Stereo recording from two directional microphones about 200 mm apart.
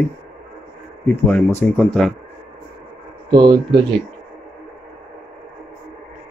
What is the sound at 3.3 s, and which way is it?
Speech, 20° right (ahead or behind).